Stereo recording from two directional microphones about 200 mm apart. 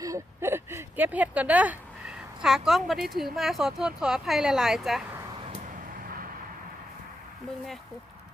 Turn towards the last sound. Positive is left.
turn(degrees=0)  # may be behind; listen again after turning